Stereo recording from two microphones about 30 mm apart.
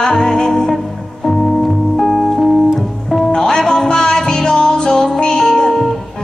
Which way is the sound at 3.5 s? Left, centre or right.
Left.